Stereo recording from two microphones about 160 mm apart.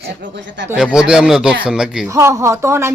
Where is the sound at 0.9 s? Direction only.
5° right (ahead or behind).